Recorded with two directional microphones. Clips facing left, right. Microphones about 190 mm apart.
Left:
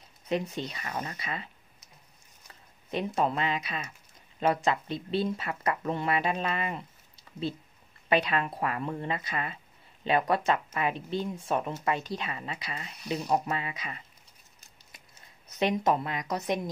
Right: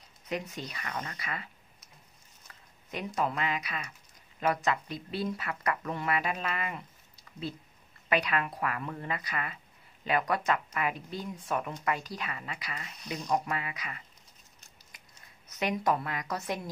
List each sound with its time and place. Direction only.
0.3 s speech: 25° left (ahead or behind)
3.2 s speech: 30° left (ahead or behind)
8.1 s speech: 25° left (ahead or behind)
15.6 s speech: 25° left (ahead or behind)